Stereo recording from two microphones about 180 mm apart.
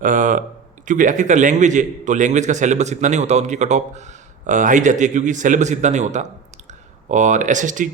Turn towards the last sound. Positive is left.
turn(degrees=-45)  # may be behind; listen again after turning